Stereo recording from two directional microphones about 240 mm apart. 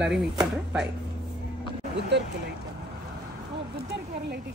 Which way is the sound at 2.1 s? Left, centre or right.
Right.